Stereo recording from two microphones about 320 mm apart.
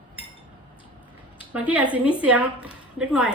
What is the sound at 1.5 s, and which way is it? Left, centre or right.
A woman's voice, centre.